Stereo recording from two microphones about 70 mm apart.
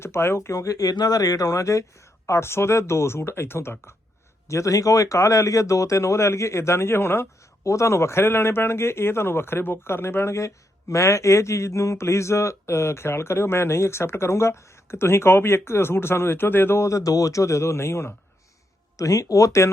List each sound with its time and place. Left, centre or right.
0.0 s speech: left
0.5 s speech: left
4.4 s speech: left
7.6 s speech: left
16.8 s speech: left
18.9 s speech: left